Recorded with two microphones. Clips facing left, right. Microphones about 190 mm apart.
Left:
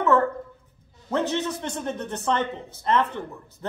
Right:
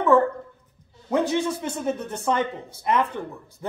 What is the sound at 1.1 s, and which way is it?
A man's voice, 10° right (ahead or behind).